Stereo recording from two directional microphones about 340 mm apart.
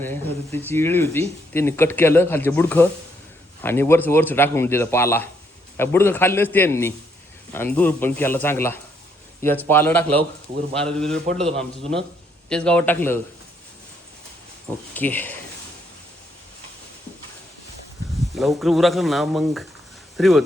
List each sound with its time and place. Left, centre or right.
0.0 s speech: centre
12.5 s speech: centre
14.9 s speech: centre
18.3 s speech: centre